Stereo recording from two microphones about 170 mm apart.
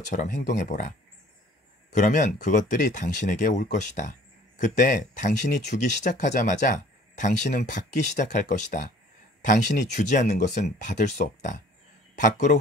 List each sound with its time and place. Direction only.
0.0 s speech: 45° left (ahead or behind)